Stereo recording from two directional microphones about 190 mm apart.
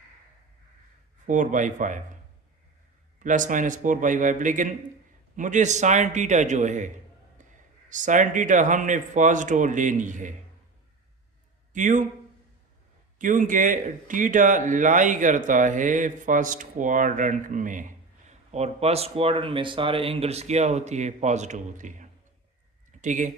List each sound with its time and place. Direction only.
1.3 s speech: 40° right (ahead or behind)
3.2 s speech: 40° right (ahead or behind)
11.7 s speech: 40° right (ahead or behind)
13.1 s speech: 45° right (ahead or behind)